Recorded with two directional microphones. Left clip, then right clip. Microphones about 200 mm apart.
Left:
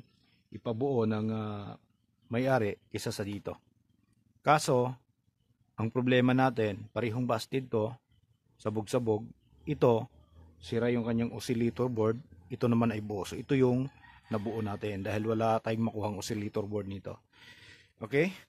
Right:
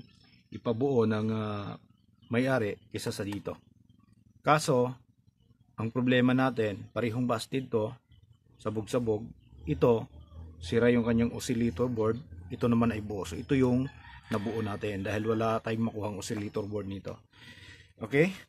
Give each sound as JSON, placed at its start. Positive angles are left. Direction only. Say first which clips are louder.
{"t": 0.5, "sound": "a man's voice", "louder": "right 3 dB", "side_deg": 40}